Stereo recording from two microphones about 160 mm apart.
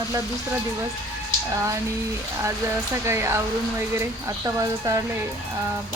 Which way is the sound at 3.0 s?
15° right (ahead or behind).